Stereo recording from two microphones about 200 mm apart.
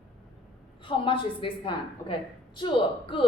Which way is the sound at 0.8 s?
25° left (ahead or behind).